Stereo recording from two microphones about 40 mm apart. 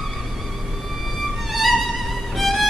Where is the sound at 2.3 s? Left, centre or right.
Centre.